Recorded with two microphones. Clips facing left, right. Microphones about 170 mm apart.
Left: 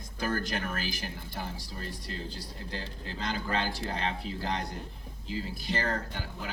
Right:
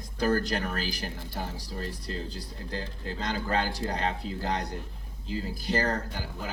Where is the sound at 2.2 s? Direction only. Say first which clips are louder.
Right 2 dB; 35° right (ahead or behind).